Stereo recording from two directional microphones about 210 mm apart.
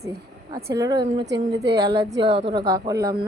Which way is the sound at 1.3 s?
55° right (ahead or behind).